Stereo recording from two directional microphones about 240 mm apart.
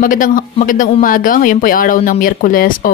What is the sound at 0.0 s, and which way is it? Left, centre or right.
Speech, left.